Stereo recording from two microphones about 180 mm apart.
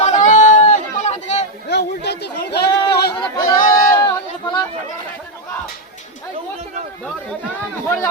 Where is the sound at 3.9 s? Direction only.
20° left (ahead or behind).